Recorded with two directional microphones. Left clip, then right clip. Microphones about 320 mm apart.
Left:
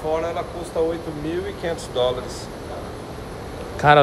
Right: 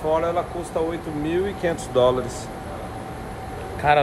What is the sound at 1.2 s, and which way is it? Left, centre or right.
Speech, right.